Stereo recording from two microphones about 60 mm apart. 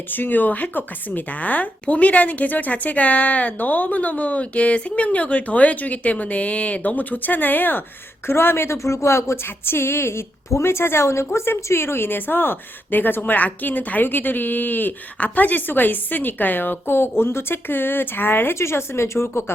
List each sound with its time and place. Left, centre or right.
0.1 s a woman's voice: left